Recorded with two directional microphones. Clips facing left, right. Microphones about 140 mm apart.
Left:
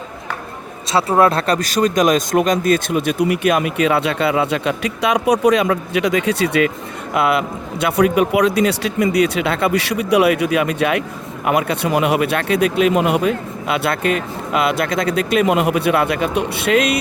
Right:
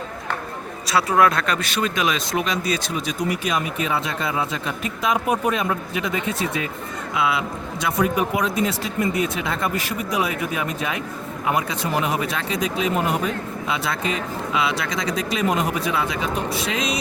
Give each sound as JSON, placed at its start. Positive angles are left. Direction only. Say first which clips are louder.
{"t": 0.9, "sound": "speech", "louder": "left 4 dB", "side_deg": 25}
{"t": 7.1, "sound": "speech", "louder": "left 6 dB", "side_deg": 60}